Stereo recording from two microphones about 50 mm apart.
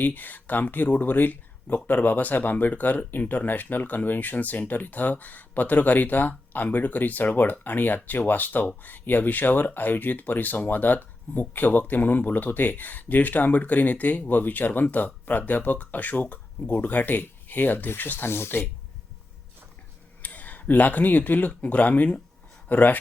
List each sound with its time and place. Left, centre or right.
0.0 s speech: left
20.2 s speech: left